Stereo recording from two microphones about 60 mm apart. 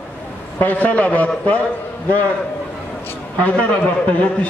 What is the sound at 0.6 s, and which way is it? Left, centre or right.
A man's voice, left.